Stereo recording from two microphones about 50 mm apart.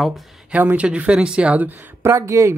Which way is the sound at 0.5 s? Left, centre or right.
Right.